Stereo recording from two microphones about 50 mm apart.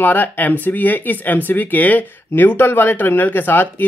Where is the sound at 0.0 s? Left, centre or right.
Left.